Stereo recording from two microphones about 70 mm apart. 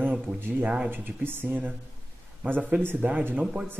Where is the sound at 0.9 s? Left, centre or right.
Right.